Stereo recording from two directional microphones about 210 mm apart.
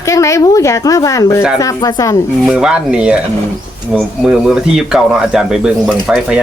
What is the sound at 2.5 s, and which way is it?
Speech, 5° right (ahead or behind).